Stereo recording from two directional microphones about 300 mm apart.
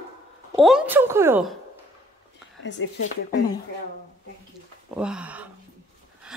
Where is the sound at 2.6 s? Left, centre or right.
Left.